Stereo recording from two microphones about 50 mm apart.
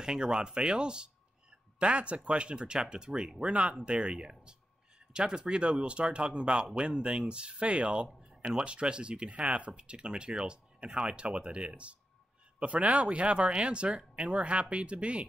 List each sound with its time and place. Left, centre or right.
0.0 s speech: centre